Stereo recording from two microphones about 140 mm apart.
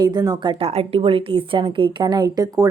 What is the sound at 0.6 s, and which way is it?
A woman's voice, 45° right (ahead or behind).